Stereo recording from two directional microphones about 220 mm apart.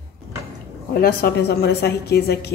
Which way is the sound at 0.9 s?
45° left (ahead or behind).